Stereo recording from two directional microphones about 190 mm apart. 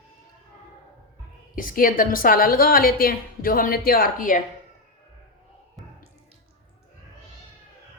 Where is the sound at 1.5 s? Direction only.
45° left (ahead or behind).